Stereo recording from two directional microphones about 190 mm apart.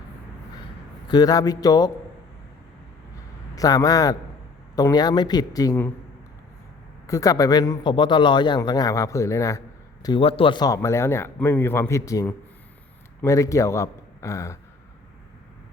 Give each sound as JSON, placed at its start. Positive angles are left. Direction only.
{"t": 1.0, "sound": "a man's voice", "side_deg": 20}
{"t": 3.5, "sound": "a man's voice", "side_deg": 20}
{"t": 7.1, "sound": "a man's voice", "side_deg": 20}
{"t": 10.0, "sound": "a man's voice", "side_deg": 25}